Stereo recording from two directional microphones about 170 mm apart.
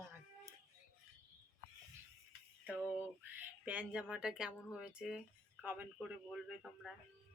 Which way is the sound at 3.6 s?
10° right (ahead or behind).